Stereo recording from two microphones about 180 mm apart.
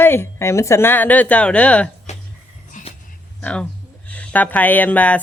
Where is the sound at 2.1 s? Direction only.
40° left (ahead or behind).